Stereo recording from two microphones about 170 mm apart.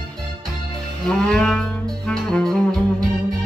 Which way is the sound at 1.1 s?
5° left (ahead or behind).